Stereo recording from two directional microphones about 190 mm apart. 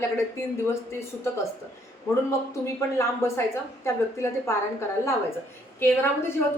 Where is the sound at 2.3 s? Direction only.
15° left (ahead or behind).